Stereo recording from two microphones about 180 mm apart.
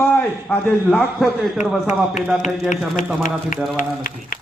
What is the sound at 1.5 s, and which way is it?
A man's voice, 40° left (ahead or behind).